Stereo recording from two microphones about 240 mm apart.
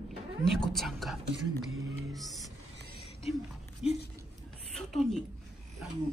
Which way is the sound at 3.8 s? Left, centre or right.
Left.